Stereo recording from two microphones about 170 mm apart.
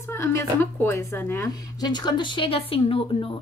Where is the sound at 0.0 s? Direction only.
15° left (ahead or behind).